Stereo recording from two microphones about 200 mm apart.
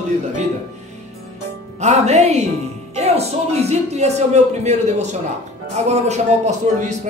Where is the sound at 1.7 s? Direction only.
35° right (ahead or behind).